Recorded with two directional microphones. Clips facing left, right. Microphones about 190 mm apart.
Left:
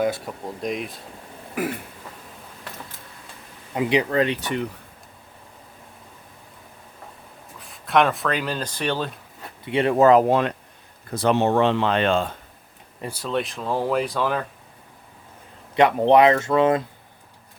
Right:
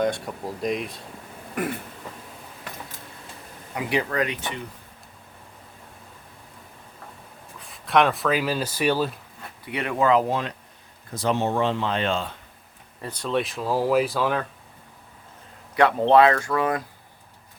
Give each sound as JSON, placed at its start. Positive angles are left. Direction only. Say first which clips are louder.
{"t": 0.0, "sound": "speech", "louder": "left 1 dB", "side_deg": 5}
{"t": 3.8, "sound": "speech", "louder": "left 5 dB", "side_deg": 25}
{"t": 7.6, "sound": "speech", "louder": "left 1 dB", "side_deg": 0}
{"t": 9.6, "sound": "speech", "louder": "left 6 dB", "side_deg": 30}
{"t": 13.0, "sound": "speech", "louder": "even", "side_deg": 10}
{"t": 15.7, "sound": "speech", "louder": "left 1 dB", "side_deg": 15}